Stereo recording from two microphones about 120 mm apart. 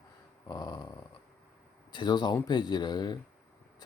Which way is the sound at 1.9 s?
40° left (ahead or behind).